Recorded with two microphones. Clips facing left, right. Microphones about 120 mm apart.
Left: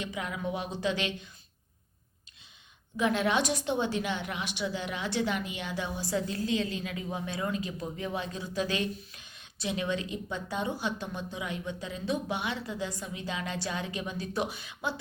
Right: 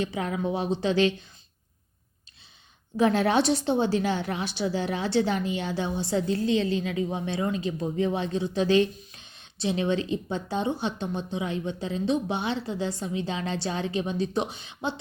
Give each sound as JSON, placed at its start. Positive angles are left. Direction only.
{"t": 0.0, "sound": "a woman's voice", "side_deg": -35}
{"t": 3.0, "sound": "a woman's voice", "side_deg": -35}